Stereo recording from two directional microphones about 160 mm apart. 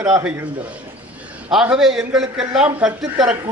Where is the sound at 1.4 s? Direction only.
5° right (ahead or behind).